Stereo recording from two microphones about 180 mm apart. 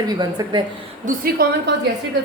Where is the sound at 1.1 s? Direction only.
60° right (ahead or behind).